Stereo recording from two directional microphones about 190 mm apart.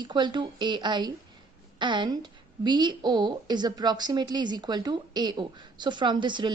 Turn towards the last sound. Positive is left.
turn(degrees=-25)  # may be behind; listen again after turning